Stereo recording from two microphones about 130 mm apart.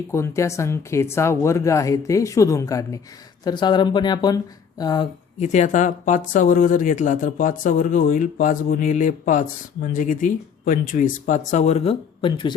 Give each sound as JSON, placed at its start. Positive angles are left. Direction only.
{"t": 0.1, "sound": "speech", "side_deg": 25}
{"t": 5.4, "sound": "speech", "side_deg": 65}
{"t": 9.9, "sound": "speech", "side_deg": 90}
{"t": 12.3, "sound": "speech", "side_deg": 35}